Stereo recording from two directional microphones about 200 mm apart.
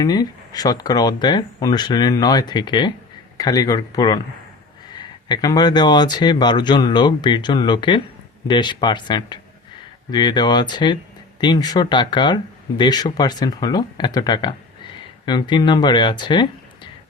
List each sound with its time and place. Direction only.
0.0 s speech: 20° left (ahead or behind)